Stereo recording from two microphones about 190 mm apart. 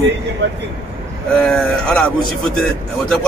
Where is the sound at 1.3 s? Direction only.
Centre (ahead or behind).